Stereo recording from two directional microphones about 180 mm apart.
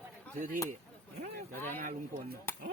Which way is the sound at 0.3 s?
50° right (ahead or behind).